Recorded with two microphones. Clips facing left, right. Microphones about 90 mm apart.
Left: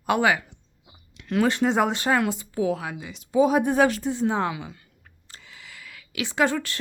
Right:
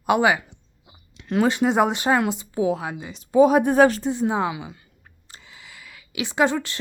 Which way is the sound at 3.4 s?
55° right (ahead or behind).